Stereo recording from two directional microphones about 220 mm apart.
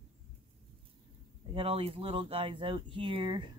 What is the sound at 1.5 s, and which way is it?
Speech, 25° right (ahead or behind).